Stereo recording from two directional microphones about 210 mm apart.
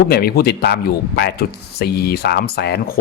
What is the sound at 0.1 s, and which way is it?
Speech, 45° left (ahead or behind).